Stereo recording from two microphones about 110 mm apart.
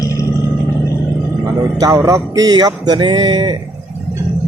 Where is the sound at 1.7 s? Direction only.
30° right (ahead or behind).